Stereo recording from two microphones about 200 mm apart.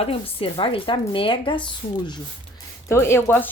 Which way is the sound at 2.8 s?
15° left (ahead or behind).